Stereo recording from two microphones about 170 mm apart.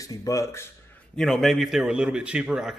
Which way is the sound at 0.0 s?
20° left (ahead or behind).